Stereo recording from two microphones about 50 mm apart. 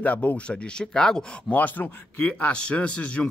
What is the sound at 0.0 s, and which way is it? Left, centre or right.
Speech, left.